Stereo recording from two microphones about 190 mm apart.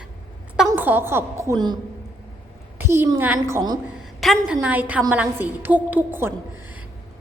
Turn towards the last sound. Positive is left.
turn(degrees=-10)  # may be behind; listen again after turning